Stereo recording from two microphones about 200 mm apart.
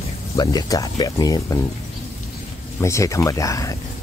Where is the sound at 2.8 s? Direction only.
15° left (ahead or behind).